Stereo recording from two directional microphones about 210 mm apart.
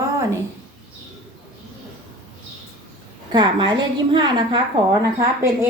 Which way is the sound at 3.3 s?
20° right (ahead or behind).